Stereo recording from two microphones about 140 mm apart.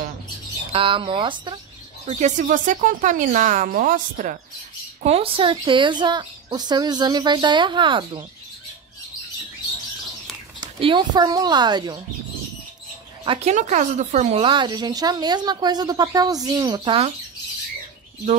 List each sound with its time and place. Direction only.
0.7 s speech: 40° right (ahead or behind)
2.0 s speech: 55° right (ahead or behind)
5.0 s speech: 45° right (ahead or behind)
10.6 s speech: 35° right (ahead or behind)
13.2 s speech: 40° right (ahead or behind)
13.5 s speech: 55° right (ahead or behind)
14.4 s speech: 35° right (ahead or behind)